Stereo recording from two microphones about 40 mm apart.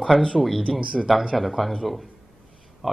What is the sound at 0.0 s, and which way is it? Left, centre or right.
Speech, centre.